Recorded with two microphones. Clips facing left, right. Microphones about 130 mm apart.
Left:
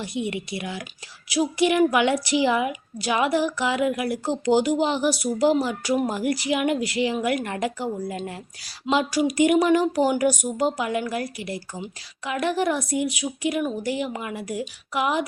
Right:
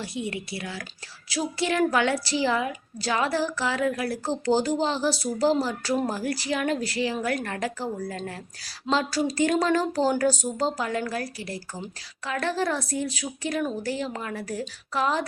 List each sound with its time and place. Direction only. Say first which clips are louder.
0.0 s a woman's voice: left 3 dB; 20° left (ahead or behind)